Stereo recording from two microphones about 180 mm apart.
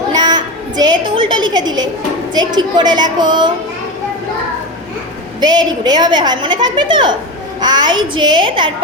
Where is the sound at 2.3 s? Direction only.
25° right (ahead or behind).